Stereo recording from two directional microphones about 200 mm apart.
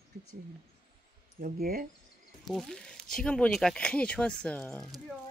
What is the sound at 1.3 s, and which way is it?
Speech, 45° right (ahead or behind).